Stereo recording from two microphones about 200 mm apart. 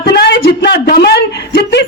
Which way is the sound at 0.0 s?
55° left (ahead or behind).